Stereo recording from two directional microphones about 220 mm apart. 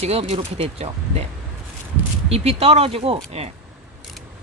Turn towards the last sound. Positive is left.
turn(degrees=-25)  # may be behind; listen again after turning